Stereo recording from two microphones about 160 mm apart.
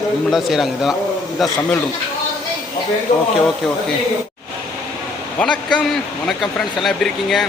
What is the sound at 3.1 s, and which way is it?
Speech, 40° left (ahead or behind).